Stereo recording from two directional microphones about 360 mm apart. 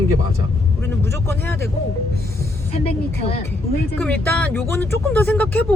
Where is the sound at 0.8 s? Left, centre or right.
Centre.